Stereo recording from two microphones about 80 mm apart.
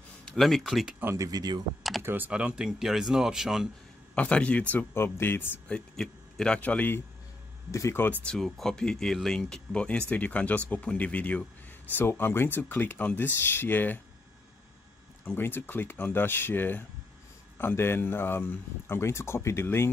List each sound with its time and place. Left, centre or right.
0.2 s speech: centre
1.1 s speech: right
1.8 s computer keyboard: centre
2.0 s speech: right; by 3.6 s centre
4.1 s speech: centre
4.9 s speech: left
5.7 s a man's voice: centre
8.3 s speech: centre
11.9 s speech: left
15.2 s speech: left